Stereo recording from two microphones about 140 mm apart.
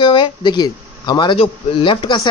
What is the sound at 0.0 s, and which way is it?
A man's voice, 35° left (ahead or behind).